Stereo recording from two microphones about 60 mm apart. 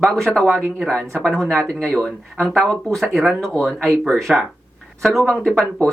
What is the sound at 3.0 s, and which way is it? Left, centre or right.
Speech, centre.